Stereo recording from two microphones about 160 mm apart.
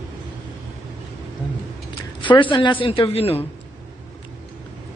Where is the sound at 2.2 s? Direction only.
30° left (ahead or behind).